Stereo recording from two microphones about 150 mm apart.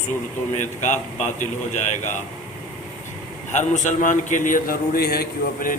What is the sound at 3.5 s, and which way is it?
A man's voice, 50° left (ahead or behind).